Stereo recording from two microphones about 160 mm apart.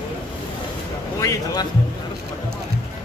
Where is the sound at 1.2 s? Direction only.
20° left (ahead or behind).